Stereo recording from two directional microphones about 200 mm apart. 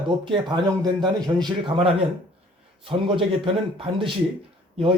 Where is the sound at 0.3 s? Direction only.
25° right (ahead or behind).